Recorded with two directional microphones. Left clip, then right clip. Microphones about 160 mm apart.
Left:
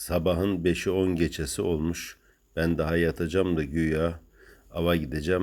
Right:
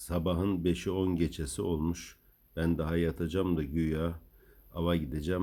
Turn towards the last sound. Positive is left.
turn(degrees=15)  # may be behind; listen again after turning